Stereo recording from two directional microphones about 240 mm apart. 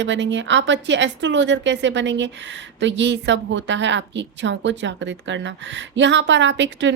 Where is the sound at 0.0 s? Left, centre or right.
Right.